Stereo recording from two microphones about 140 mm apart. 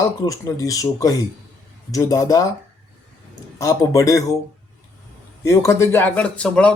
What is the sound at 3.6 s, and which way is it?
Speech, 25° left (ahead or behind).